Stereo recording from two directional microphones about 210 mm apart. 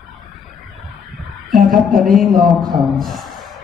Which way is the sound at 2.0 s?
Centre (ahead or behind).